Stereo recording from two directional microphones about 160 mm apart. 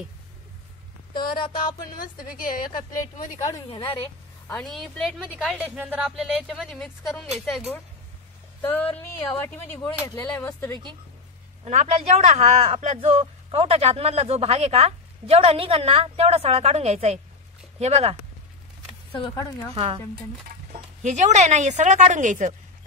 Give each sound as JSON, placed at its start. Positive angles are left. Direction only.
{"t": 1.1, "sound": "a sound", "side_deg": 30}
{"t": 2.0, "sound": "a woman's voice", "side_deg": 60}
{"t": 3.5, "sound": "a sound", "side_deg": 30}
{"t": 4.6, "sound": "speech", "side_deg": 0}
{"t": 8.5, "sound": "speech", "side_deg": 10}
{"t": 11.6, "sound": "speech", "side_deg": -45}
{"t": 19.1, "sound": "a sound", "side_deg": 30}
{"t": 19.7, "sound": "speech", "side_deg": -35}
{"t": 21.0, "sound": "a woman's voice", "side_deg": -50}